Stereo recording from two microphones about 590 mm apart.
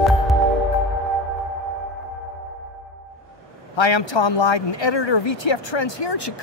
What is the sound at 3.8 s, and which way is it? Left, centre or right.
Speech, left.